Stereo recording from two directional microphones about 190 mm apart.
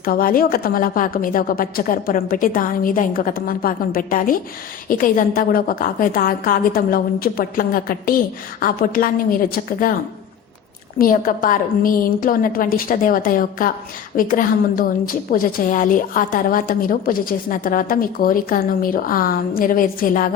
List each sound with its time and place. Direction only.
0.0 s a woman's voice: 50° left (ahead or behind)
10.9 s a woman's voice: 45° left (ahead or behind)